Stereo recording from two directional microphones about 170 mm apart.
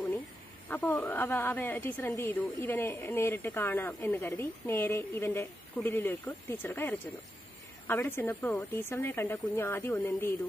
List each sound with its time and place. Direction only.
0.7 s speech: 10° left (ahead or behind)